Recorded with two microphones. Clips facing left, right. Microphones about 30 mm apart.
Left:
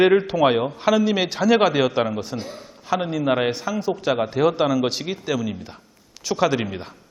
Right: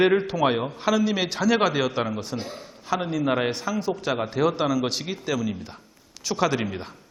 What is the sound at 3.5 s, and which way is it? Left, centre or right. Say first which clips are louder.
A man's voice: left 2 dB; centre.